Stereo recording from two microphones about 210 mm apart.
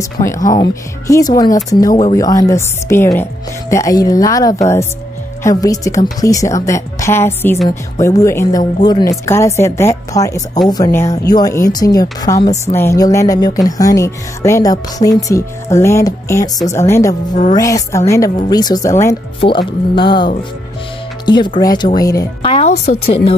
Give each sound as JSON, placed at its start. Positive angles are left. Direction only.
{"t": 0.0, "sound": "a woman's voice", "side_deg": 15}
{"t": 21.5, "sound": "speech", "side_deg": 20}
{"t": 22.5, "sound": "a woman's voice", "side_deg": 30}